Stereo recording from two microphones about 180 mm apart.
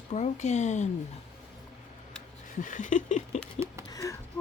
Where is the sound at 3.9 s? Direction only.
20° left (ahead or behind).